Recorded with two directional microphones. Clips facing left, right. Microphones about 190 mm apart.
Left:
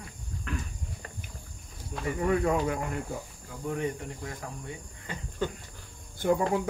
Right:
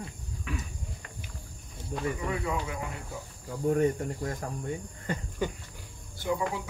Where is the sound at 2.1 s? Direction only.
50° left (ahead or behind).